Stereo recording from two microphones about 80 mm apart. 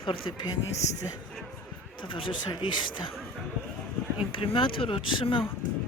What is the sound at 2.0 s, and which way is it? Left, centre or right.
Speech, left.